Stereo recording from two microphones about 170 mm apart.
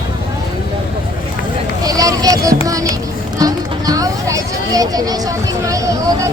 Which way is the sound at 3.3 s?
20° right (ahead or behind).